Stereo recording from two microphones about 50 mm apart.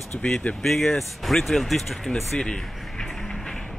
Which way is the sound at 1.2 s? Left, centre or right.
Centre.